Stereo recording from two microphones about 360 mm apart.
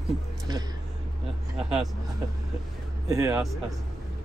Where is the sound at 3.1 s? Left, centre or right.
Centre.